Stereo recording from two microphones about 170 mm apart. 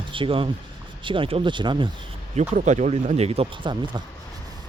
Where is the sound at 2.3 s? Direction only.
45° right (ahead or behind).